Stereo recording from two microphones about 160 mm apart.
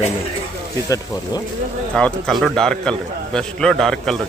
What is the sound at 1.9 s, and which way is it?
A man's voice, 5° left (ahead or behind).